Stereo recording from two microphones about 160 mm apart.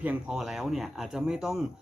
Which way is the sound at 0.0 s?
5° right (ahead or behind).